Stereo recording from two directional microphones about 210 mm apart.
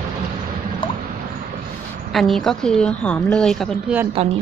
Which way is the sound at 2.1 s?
Centre (ahead or behind).